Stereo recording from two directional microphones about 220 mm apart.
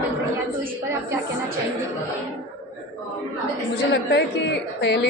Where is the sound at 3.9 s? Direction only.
50° left (ahead or behind).